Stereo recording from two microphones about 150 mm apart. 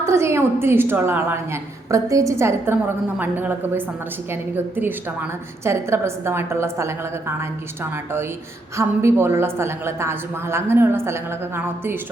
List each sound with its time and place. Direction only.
0.0 s a woman's voice: 20° right (ahead or behind)
8.7 s a woman's voice: 20° right (ahead or behind)